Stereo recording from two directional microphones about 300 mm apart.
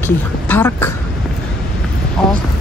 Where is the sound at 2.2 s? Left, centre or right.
Centre.